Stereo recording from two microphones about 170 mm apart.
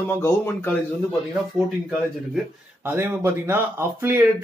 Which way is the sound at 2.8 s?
10° right (ahead or behind).